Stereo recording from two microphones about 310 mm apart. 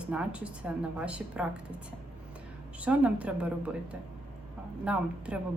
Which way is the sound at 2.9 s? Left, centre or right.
Centre.